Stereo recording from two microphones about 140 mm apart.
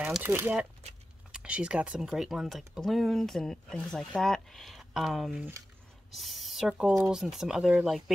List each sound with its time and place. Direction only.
0.0 s speech: 10° right (ahead or behind)